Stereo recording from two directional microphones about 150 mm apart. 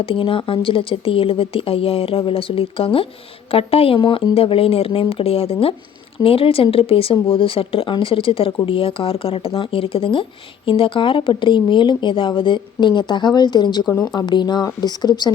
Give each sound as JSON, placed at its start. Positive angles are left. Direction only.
{"t": 0.0, "sound": "speech", "side_deg": 35}